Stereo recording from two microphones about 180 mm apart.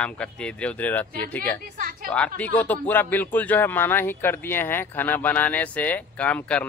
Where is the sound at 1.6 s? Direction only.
50° right (ahead or behind).